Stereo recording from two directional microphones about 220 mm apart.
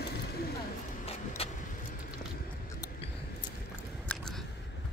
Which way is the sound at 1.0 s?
25° left (ahead or behind).